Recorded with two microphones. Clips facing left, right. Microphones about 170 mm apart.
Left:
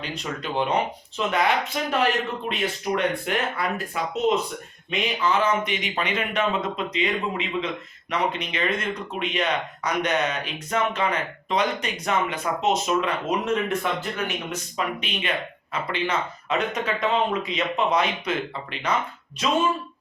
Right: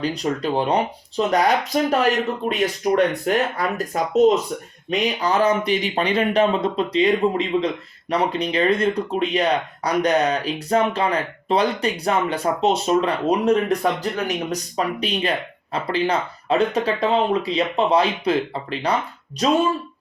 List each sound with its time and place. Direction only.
0.0 s speech: 35° right (ahead or behind)